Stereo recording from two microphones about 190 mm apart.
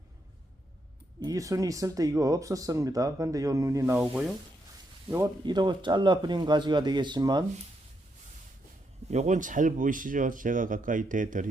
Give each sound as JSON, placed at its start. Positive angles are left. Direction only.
{"t": 1.2, "sound": "speech", "side_deg": -20}
{"t": 5.0, "sound": "speech", "side_deg": -15}
{"t": 9.0, "sound": "speech", "side_deg": -35}